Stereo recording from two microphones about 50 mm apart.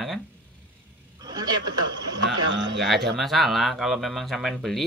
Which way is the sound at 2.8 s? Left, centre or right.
Centre.